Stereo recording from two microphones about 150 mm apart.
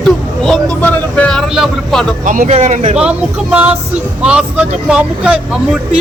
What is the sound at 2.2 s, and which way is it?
Speech, 60° right (ahead or behind).